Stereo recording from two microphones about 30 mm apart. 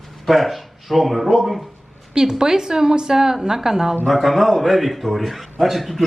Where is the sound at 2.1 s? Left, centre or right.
Centre.